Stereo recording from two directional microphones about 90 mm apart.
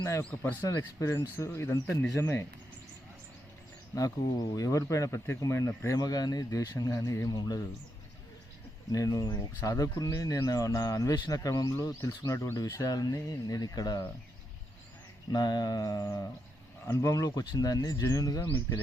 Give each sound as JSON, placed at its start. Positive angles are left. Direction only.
{"t": 0.6, "sound": "speech", "side_deg": 35}
{"t": 3.9, "sound": "speech", "side_deg": 40}
{"t": 8.9, "sound": "speech", "side_deg": 40}
{"t": 15.3, "sound": "speech", "side_deg": 50}
{"t": 17.0, "sound": "speech", "side_deg": 35}